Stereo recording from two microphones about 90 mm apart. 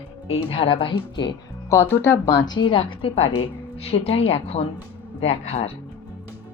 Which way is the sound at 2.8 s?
90° left.